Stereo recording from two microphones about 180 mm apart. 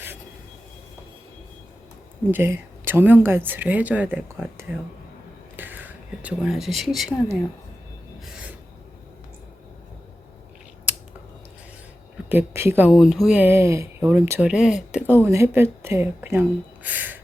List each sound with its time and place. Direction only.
2.3 s speech: 10° right (ahead or behind)
8.2 s gasp: 5° right (ahead or behind)
12.3 s speech: 10° right (ahead or behind)